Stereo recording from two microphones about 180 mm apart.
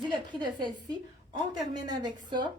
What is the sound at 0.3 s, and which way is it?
A woman's voice, 25° right (ahead or behind).